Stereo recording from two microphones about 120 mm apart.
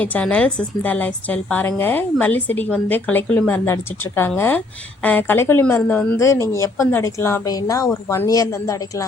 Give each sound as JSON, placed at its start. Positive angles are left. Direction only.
{"t": 0.0, "sound": "a woman's voice", "side_deg": 10}